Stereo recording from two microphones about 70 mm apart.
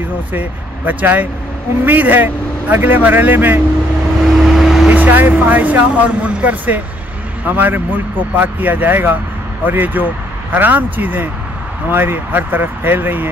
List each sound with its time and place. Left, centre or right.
0.3 s speech: right
4.4 s vehicle: centre
4.8 s speech: right